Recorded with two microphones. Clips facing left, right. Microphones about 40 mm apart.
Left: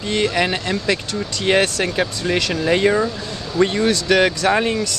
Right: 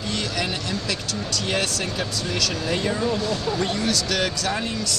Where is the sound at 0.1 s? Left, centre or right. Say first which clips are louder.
Left 9 dB; left.